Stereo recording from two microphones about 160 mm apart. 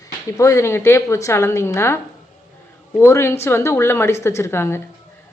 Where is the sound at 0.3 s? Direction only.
20° left (ahead or behind).